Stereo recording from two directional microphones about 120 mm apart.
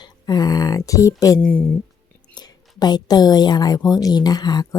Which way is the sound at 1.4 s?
10° left (ahead or behind).